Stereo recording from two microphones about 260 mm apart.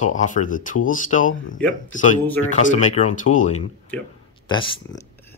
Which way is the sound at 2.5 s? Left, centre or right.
Left.